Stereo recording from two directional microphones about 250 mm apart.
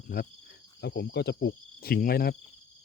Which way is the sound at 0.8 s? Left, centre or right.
Left.